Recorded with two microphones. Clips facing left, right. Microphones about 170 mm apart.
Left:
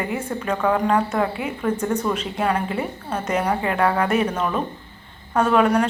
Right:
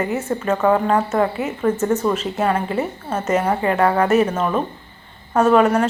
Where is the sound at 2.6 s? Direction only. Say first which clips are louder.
Right 3 dB; 45° right (ahead or behind).